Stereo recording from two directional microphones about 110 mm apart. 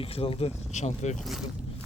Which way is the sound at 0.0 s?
60° left (ahead or behind).